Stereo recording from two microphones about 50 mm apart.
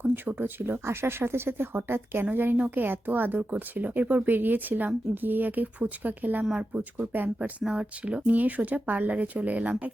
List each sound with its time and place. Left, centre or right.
0.0 s speech: right
7.0 s speech: right
7.6 s speech: centre
8.3 s speech: right